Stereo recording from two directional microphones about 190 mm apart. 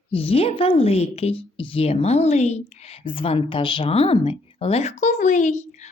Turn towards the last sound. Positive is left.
turn(degrees=35)  # may be behind; listen again after turning